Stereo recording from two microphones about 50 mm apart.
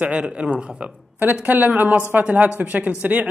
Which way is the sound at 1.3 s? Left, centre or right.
Right.